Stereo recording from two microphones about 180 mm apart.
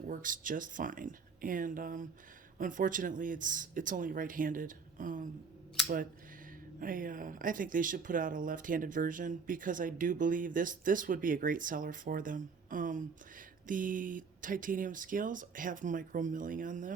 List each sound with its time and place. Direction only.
0.1 s speech: 50° right (ahead or behind)
6.7 s speech: 50° right (ahead or behind)